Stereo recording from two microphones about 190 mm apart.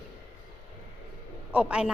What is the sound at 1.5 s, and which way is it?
Speech, 5° right (ahead or behind).